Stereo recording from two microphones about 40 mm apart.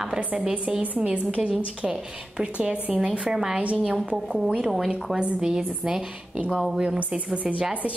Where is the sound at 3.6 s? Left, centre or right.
Right.